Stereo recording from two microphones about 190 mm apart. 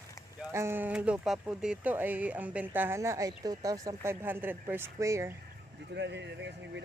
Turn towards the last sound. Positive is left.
turn(degrees=-70)  # may be behind; listen again after turning